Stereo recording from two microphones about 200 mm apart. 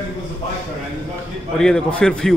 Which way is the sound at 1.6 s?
5° left (ahead or behind).